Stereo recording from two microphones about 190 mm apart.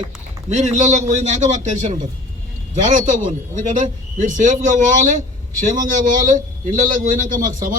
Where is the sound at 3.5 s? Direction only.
40° right (ahead or behind).